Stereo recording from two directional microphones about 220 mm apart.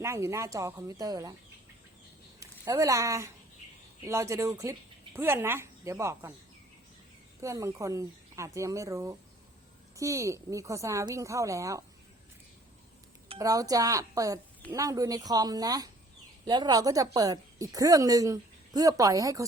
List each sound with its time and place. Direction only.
0.0 s a woman's voice: 10° right (ahead or behind)
2.4 s a woman's voice: 15° right (ahead or behind)
7.4 s a woman's voice: 15° right (ahead or behind)
13.4 s a woman's voice: 15° right (ahead or behind)